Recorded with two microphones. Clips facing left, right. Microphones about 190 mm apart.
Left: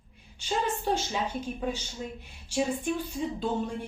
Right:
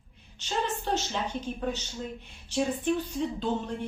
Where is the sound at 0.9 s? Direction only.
10° left (ahead or behind).